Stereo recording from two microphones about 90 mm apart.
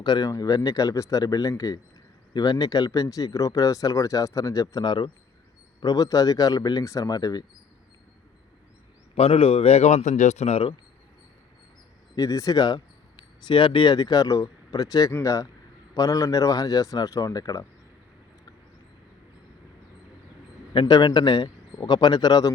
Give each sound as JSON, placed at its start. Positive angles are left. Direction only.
{"t": 0.0, "sound": "speech", "side_deg": 50}
{"t": 5.8, "sound": "a man's voice", "side_deg": 45}
{"t": 9.1, "sound": "speech", "side_deg": 90}
{"t": 12.1, "sound": "a man's voice", "side_deg": 40}
{"t": 13.5, "sound": "a man's voice", "side_deg": 65}
{"t": 20.7, "sound": "a man's voice", "side_deg": 55}